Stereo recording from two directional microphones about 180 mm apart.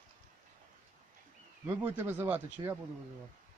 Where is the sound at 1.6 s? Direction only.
15° right (ahead or behind).